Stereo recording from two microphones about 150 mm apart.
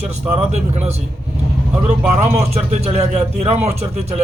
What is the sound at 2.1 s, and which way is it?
Speech, 45° right (ahead or behind).